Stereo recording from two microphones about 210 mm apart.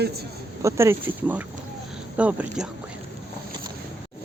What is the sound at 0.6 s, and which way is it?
Speech, 15° right (ahead or behind).